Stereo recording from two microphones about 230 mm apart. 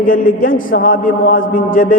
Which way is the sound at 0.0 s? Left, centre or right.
Left.